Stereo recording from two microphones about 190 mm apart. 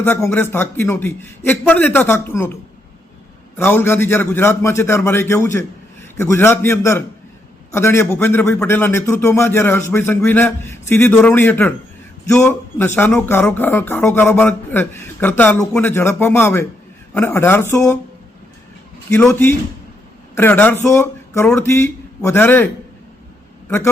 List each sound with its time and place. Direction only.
0.0 s speech: 10° left (ahead or behind)
3.6 s speech: 10° left (ahead or behind)
19.1 s a man's voice: 5° left (ahead or behind)